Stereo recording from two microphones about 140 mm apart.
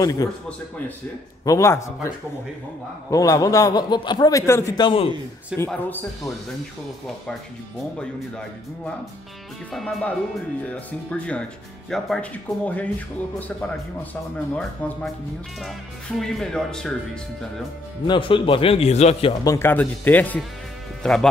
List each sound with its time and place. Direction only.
0.0 s a man's voice: 25° left (ahead or behind)
1.4 s a man's voice: 20° left (ahead or behind)
4.7 s speech: 35° left (ahead or behind)
5.7 s a man's voice: 15° left (ahead or behind)
8.0 s a man's voice: 5° left (ahead or behind)
14.5 s a man's voice: 10° left (ahead or behind)
16.2 s speech: 5° left (ahead or behind)
18.0 s speech: 35° left (ahead or behind)
19.4 s a man's voice: 20° left (ahead or behind); by 21.3 s 5° left (ahead or behind)